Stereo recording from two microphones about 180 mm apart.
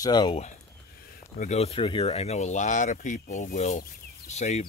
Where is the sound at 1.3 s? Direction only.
40° left (ahead or behind).